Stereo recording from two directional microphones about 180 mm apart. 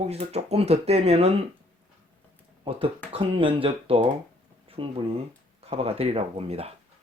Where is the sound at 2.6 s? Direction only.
30° right (ahead or behind).